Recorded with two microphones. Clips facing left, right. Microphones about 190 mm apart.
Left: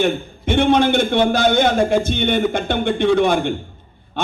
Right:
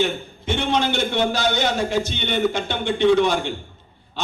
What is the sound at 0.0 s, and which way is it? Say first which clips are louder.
A man's voice: left 4 dB; 55° left (ahead or behind).